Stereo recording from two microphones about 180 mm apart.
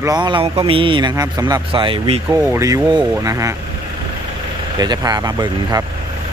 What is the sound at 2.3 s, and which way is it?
Speech, 15° right (ahead or behind).